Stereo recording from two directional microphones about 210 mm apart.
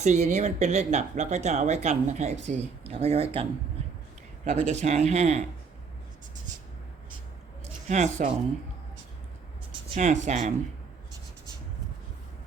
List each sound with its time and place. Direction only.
0.0 s speech: 35° right (ahead or behind)
4.4 s speech: 35° right (ahead or behind)
7.9 s speech: 35° right (ahead or behind)
9.9 s speech: 35° right (ahead or behind)